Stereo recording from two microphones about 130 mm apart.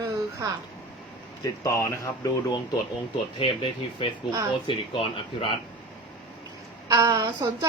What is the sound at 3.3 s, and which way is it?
Speech, 40° left (ahead or behind).